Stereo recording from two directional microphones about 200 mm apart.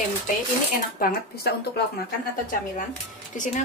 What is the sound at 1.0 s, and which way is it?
Speech, 50° left (ahead or behind).